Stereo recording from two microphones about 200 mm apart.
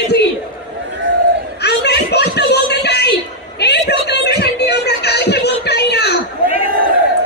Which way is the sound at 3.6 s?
55° left (ahead or behind).